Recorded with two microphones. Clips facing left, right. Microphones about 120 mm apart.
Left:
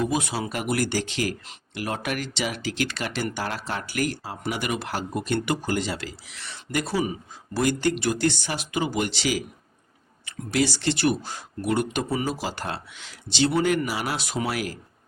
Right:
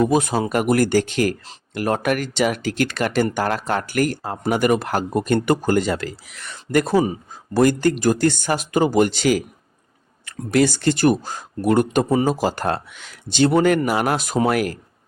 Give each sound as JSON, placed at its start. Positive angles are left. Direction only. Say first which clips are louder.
{"t": 0.0, "sound": "speech", "louder": "right 8 dB", "side_deg": -45}
{"t": 7.0, "sound": "speech", "louder": "right 5 dB", "side_deg": -40}